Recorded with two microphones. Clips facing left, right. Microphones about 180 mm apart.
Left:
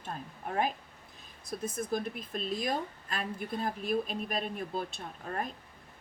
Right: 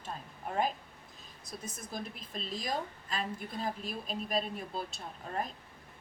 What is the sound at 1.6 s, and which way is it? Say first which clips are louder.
A woman's voice: left 9 dB; 55° left (ahead or behind).